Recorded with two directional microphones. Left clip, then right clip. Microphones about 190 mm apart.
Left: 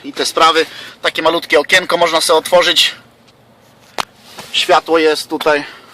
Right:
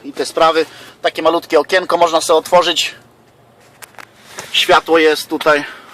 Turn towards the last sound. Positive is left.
turn(degrees=0)  # may be behind; listen again after turning